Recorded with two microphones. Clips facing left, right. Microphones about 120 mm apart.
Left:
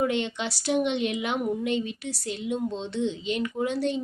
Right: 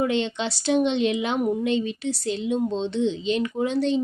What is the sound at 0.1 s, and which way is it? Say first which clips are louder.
Speech: right 3 dB; 25° right (ahead or behind).